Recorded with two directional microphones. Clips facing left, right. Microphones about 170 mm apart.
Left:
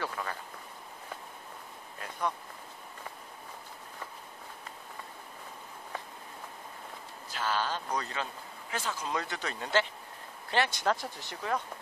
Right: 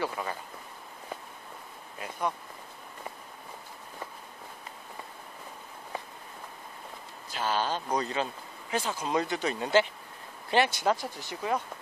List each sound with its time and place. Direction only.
0.0 s speech: 15° right (ahead or behind)
2.0 s a sound: 10° right (ahead or behind)
7.3 s a man's voice: 20° right (ahead or behind)